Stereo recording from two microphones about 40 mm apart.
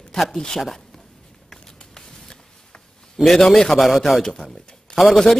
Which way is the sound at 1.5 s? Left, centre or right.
Centre.